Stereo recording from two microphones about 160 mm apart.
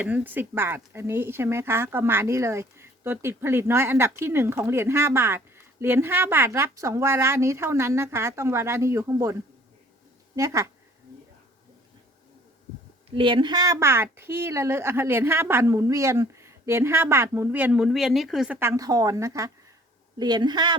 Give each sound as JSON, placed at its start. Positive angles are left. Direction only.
{"t": 0.0, "sound": "a woman's voice", "side_deg": -10}
{"t": 13.1, "sound": "a woman's voice", "side_deg": -35}
{"t": 18.6, "sound": "speech", "side_deg": -20}